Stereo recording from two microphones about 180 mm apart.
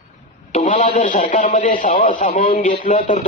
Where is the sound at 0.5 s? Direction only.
45° left (ahead or behind).